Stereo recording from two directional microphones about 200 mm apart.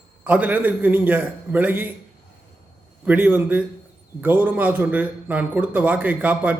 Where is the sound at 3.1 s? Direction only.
10° right (ahead or behind).